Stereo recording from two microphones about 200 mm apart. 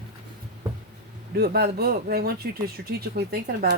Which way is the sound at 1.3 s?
50° right (ahead or behind).